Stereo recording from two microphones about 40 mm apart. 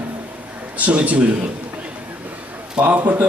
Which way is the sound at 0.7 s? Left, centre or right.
Right.